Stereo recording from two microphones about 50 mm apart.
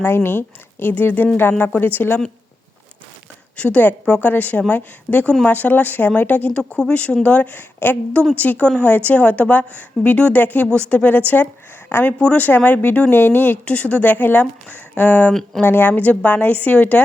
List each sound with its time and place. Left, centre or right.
0.0 s speech: left
3.6 s a woman's voice: left
8.4 s a woman's voice: left
12.4 s a woman's voice: left
13.7 s a woman's voice: left
15.3 s speech: centre
15.6 s a woman's voice: left